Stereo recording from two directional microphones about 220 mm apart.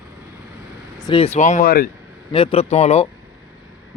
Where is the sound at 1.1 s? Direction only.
25° left (ahead or behind); by 1.8 s 40° left (ahead or behind).